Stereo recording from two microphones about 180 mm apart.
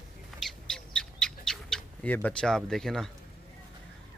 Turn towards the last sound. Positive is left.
turn(degrees=0)  # may be behind; listen again after turning